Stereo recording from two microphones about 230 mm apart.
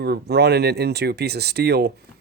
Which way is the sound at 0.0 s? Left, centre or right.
Right.